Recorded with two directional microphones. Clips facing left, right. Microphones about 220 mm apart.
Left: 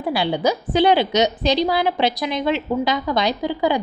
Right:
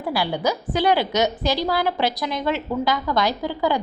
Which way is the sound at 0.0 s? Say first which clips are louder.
Left 3 dB; 20° left (ahead or behind).